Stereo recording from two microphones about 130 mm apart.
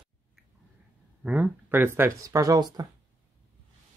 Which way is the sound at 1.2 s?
10° right (ahead or behind).